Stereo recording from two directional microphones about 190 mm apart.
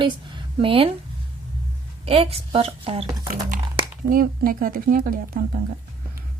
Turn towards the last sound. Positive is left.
turn(degrees=-50)  # may be behind; listen again after turning